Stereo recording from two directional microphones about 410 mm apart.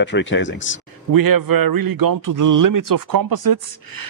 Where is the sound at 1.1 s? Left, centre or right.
Right.